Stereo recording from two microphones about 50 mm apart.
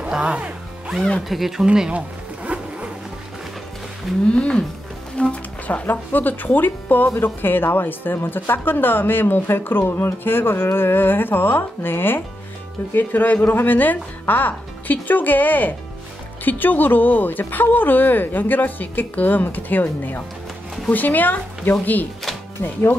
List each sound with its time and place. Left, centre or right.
0.2 s speech: right
1.3 s speech: centre
1.7 s bee: right
4.3 s speech: centre
5.9 s speech: left
12.9 s speech: left
22.6 s speech: left